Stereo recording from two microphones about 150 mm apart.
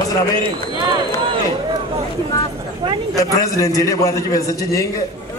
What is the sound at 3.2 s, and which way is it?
A man's voice, 20° left (ahead or behind).